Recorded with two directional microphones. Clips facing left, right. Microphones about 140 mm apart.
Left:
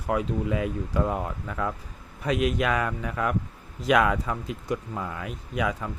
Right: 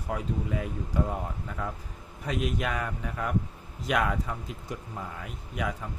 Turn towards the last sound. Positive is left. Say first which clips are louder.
# left 5 dB
turn(degrees=90)